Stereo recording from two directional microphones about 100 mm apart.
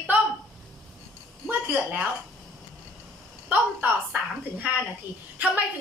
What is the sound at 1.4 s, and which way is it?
Speech, 15° right (ahead or behind).